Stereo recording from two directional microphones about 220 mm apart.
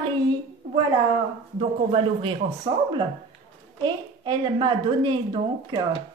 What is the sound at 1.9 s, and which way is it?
A woman's voice, 25° right (ahead or behind).